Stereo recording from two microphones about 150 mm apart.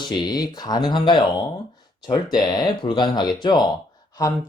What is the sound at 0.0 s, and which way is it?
Speech, 30° left (ahead or behind).